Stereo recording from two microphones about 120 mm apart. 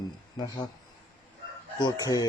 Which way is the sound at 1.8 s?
35° left (ahead or behind).